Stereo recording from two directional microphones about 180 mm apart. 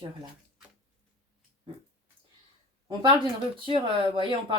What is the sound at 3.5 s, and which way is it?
A woman's voice, 30° right (ahead or behind).